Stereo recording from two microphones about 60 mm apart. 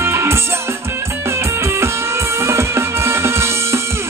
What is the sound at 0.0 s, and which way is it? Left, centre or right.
Music, right.